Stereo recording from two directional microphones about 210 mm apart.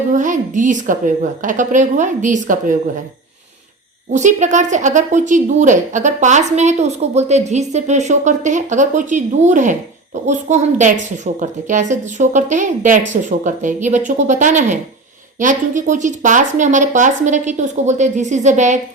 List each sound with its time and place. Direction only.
0.1 s a woman's voice: 35° right (ahead or behind)
4.1 s a woman's voice: 35° right (ahead or behind)